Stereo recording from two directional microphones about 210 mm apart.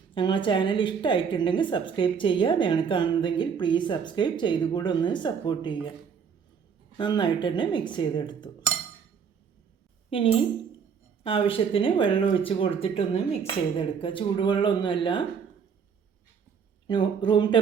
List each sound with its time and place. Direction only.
0.1 s a woman's voice: 20° left (ahead or behind)
6.9 s a woman's voice: 20° left (ahead or behind)
11.2 s a woman's voice: 25° left (ahead or behind)
16.8 s a woman's voice: 20° left (ahead or behind)